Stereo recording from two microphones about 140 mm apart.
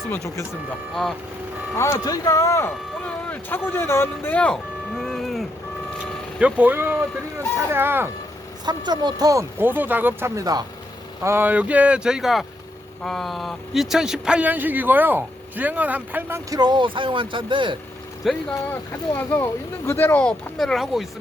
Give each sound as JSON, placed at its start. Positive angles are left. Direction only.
{"t": 1.7, "sound": "speech", "side_deg": 20}
{"t": 3.0, "sound": "a sound", "side_deg": 10}
{"t": 3.7, "sound": "speech", "side_deg": 15}
{"t": 6.4, "sound": "speech", "side_deg": -10}
{"t": 8.6, "sound": "speech", "side_deg": -30}
{"t": 16.5, "sound": "speech", "side_deg": -30}
{"t": 18.3, "sound": "speech", "side_deg": 0}
{"t": 18.7, "sound": "speech", "side_deg": 15}